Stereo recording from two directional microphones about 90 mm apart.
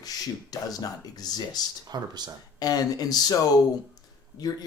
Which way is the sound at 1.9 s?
50° right (ahead or behind).